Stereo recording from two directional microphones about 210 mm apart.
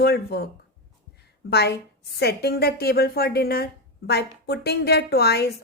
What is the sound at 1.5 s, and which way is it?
A woman's voice, 50° left (ahead or behind).